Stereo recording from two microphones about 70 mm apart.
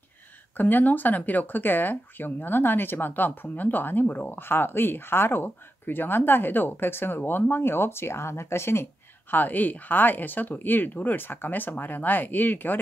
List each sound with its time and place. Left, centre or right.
0.6 s speech: left
9.3 s speech: left